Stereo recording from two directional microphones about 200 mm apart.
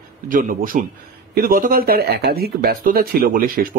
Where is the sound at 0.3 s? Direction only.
40° right (ahead or behind).